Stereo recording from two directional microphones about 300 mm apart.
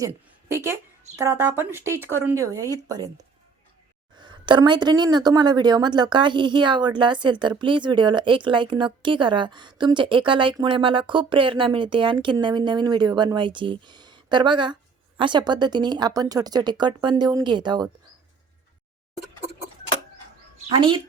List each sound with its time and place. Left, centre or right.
0.0 s a woman's voice: centre
4.2 s a woman's voice: centre
20.7 s a woman's voice: centre